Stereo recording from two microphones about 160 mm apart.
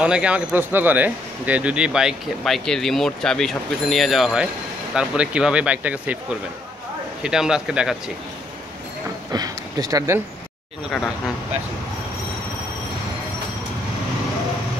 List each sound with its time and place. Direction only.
0.0 s speech: 5° right (ahead or behind)
7.2 s speech: 5° right (ahead or behind)
9.3 s speech: 25° right (ahead or behind)